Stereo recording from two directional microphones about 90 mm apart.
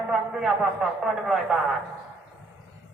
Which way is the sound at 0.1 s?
5° right (ahead or behind).